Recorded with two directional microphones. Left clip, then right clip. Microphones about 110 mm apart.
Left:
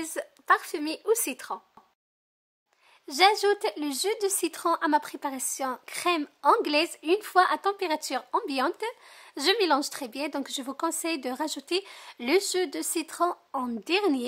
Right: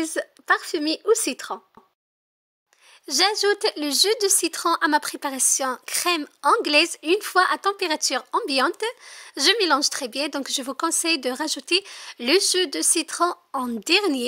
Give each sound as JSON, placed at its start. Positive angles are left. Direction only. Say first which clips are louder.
{"t": 0.0, "sound": "speech", "louder": "right 7 dB", "side_deg": -25}
{"t": 3.1, "sound": "speech", "louder": "right 1 dB", "side_deg": -25}